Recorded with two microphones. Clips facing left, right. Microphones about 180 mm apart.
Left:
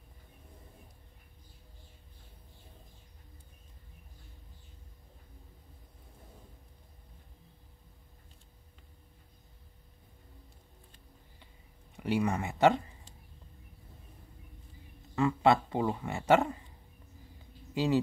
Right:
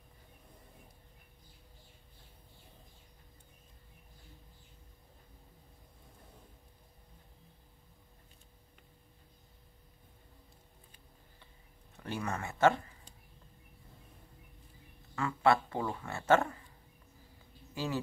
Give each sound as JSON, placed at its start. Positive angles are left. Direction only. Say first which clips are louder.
{"t": 12.0, "sound": "speech", "louder": "left 7 dB", "side_deg": 15}
{"t": 15.1, "sound": "speech", "louder": "left 3 dB", "side_deg": 20}